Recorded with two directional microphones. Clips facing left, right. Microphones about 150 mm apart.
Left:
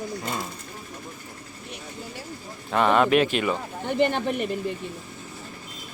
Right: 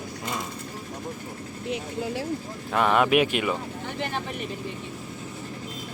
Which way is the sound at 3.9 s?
65° left (ahead or behind).